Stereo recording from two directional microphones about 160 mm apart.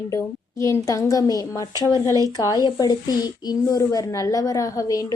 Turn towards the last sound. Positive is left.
turn(degrees=20)  # may be behind; listen again after turning